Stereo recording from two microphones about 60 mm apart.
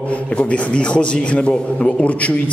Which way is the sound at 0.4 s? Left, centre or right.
Centre.